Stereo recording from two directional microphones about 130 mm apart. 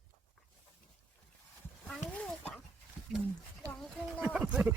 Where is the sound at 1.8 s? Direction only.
10° left (ahead or behind).